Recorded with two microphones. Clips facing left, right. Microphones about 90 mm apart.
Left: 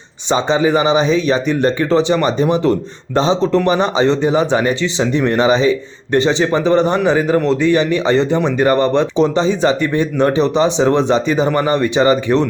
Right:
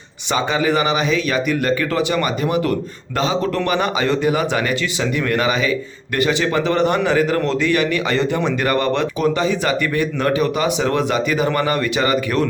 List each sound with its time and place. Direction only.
0.3 s a man's voice: 25° left (ahead or behind)